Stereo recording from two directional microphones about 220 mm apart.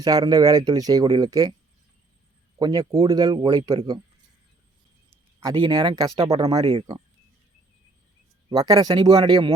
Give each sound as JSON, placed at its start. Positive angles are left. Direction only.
{"t": 0.0, "sound": "speech", "side_deg": -15}
{"t": 2.6, "sound": "speech", "side_deg": -15}
{"t": 5.4, "sound": "speech", "side_deg": -20}
{"t": 8.4, "sound": "speech", "side_deg": -15}